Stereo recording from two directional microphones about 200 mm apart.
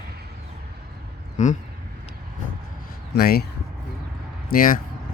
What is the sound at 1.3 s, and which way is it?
Speech, 40° left (ahead or behind).